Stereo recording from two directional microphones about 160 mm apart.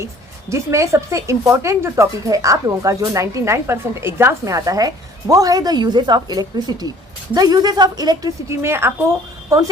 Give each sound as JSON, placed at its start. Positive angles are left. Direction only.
{"t": 0.5, "sound": "a woman's voice", "side_deg": -20}